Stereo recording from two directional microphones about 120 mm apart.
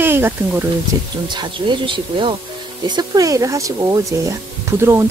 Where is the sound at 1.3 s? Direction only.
40° right (ahead or behind).